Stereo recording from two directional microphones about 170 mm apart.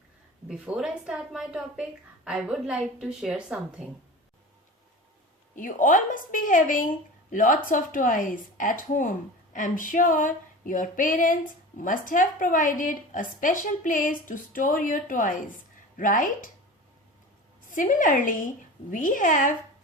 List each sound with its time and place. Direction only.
0.4 s a woman's voice: 5° right (ahead or behind)
5.5 s a woman's voice: 50° left (ahead or behind)
17.7 s a woman's voice: 50° left (ahead or behind)